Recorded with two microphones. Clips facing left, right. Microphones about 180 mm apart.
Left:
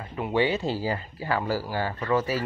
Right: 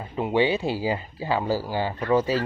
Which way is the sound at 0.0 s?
15° right (ahead or behind).